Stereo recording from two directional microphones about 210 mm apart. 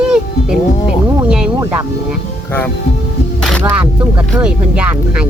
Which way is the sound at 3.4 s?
Centre (ahead or behind).